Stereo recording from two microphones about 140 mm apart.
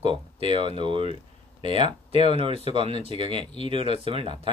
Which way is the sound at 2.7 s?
40° right (ahead or behind).